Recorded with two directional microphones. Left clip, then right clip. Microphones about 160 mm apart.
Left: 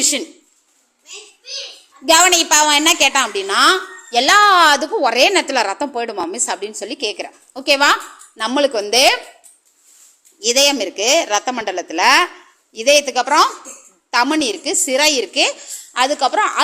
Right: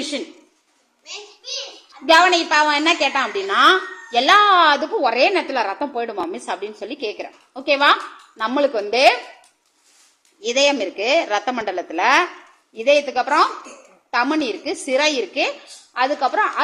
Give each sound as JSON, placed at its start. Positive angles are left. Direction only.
{"t": 2.0, "sound": "a woman's voice", "side_deg": 25}
{"t": 10.4, "sound": "a woman's voice", "side_deg": 25}